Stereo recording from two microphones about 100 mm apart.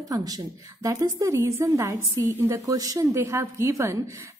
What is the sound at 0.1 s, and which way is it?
A woman's voice, 35° right (ahead or behind).